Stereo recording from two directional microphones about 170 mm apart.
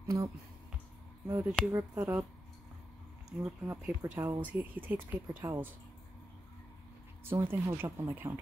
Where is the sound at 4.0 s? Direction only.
15° right (ahead or behind).